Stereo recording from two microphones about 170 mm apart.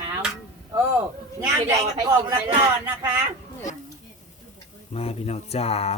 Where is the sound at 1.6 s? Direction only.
25° right (ahead or behind).